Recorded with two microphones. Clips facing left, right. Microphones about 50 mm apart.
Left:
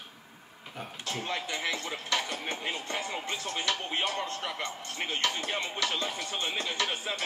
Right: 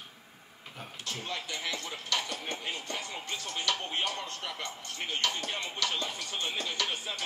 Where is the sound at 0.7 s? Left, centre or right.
Centre.